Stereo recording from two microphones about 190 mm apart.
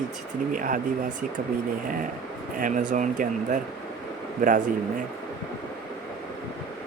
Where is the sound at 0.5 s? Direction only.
45° right (ahead or behind).